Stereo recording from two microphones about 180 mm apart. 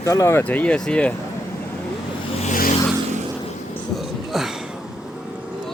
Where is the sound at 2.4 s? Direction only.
45° left (ahead or behind).